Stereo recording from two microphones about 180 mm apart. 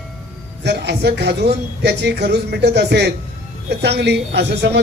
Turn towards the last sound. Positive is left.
turn(degrees=-70)  # may be behind; listen again after turning